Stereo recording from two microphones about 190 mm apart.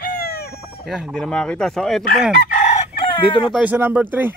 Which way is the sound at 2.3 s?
45° left (ahead or behind).